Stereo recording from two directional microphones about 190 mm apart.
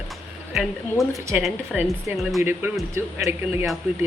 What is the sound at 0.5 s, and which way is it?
Speech, centre (ahead or behind).